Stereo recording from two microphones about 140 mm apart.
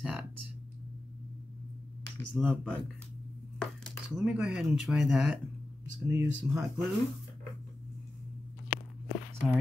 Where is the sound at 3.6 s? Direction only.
Centre (ahead or behind).